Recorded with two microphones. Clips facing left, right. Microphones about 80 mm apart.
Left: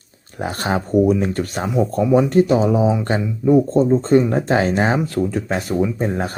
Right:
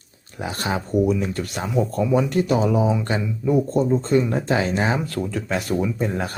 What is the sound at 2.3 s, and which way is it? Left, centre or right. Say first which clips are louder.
Speech: left 5 dB; left.